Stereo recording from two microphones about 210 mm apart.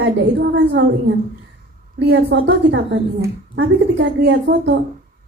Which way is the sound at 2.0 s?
55° right (ahead or behind).